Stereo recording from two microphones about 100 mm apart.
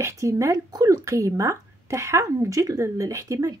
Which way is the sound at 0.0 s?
30° right (ahead or behind).